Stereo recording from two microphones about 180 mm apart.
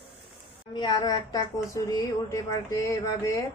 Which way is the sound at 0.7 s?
25° left (ahead or behind).